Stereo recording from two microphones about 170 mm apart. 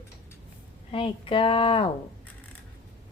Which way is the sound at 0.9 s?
30° left (ahead or behind).